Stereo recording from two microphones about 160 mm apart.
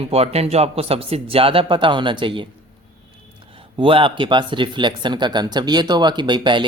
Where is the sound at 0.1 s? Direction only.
40° right (ahead or behind).